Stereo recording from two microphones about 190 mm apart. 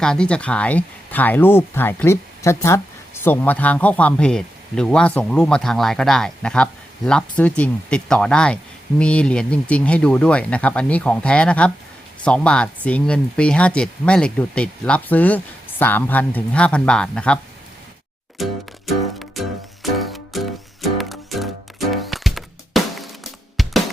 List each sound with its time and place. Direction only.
0.0 s speech: 5° left (ahead or behind)
18.4 s music: centre (ahead or behind)